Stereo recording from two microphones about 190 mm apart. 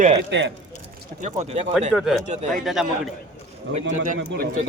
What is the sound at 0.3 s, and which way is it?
Speech, 70° right (ahead or behind).